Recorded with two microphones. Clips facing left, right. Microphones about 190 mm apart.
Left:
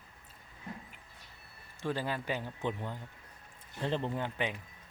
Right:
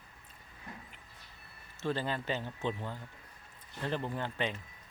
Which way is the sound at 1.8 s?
10° left (ahead or behind).